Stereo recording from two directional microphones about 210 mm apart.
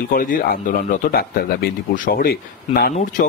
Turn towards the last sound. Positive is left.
turn(degrees=35)  # may be behind; listen again after turning